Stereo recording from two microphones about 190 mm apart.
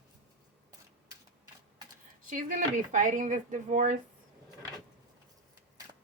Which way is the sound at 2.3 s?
40° right (ahead or behind).